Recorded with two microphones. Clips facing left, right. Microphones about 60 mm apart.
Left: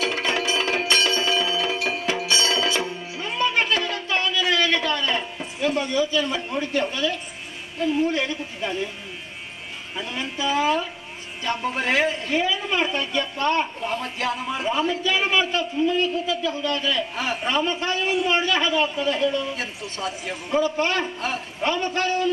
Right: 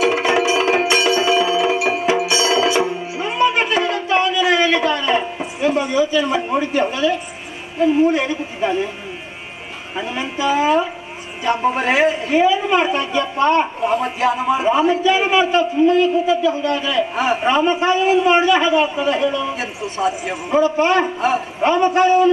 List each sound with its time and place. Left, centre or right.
0.0 s music: centre
7.8 s a man's voice: centre
9.9 s a man's voice: centre